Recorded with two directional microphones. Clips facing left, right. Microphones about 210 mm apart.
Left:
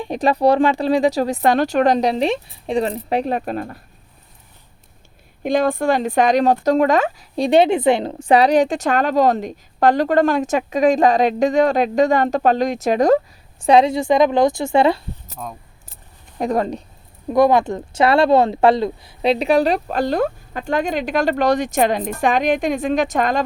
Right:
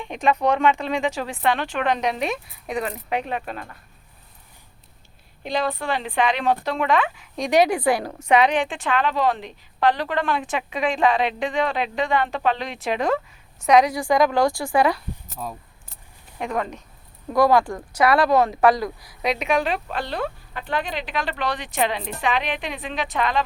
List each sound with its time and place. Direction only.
0.0 s speech: 35° left (ahead or behind)
5.4 s speech: 50° left (ahead or behind)
13.6 s a woman's voice: 30° left (ahead or behind)
15.4 s speech: centre (ahead or behind)
16.4 s speech: 35° left (ahead or behind)
17.2 s speech: 20° left (ahead or behind); by 23.4 s 45° left (ahead or behind)